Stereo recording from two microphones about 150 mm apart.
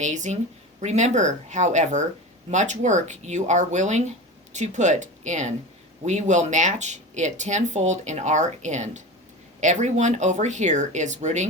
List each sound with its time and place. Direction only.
0.0 s speech: 55° right (ahead or behind)